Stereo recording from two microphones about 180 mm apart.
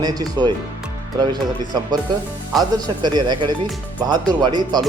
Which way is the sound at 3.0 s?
25° right (ahead or behind).